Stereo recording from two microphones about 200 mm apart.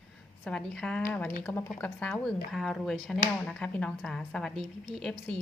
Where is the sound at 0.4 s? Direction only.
5° left (ahead or behind).